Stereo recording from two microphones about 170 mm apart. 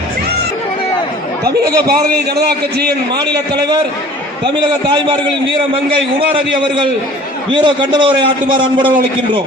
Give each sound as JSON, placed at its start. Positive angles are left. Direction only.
{"t": 1.5, "sound": "a man's voice", "side_deg": -70}
{"t": 4.4, "sound": "a man's voice", "side_deg": -30}